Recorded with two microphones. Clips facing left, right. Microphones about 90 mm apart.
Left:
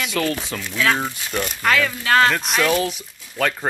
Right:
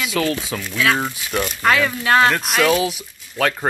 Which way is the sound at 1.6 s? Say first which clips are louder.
Right 2 dB; 20° right (ahead or behind).